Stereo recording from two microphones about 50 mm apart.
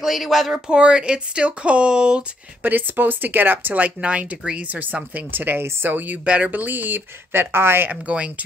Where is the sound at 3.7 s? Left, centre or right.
Right.